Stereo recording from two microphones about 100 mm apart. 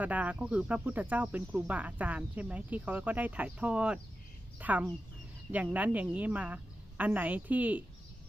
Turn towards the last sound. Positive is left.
turn(degrees=-15)  # may be behind; listen again after turning